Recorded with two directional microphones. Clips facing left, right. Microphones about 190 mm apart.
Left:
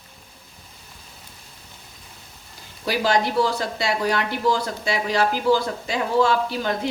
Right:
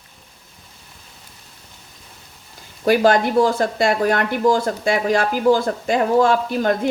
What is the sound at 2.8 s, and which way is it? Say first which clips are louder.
Speech: right 6 dB; 50° right (ahead or behind).